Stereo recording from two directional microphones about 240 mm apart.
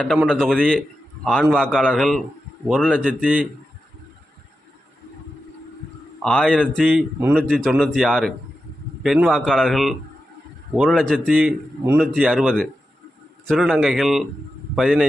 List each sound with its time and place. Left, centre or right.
0.0 s a man's voice: centre
6.2 s a man's voice: centre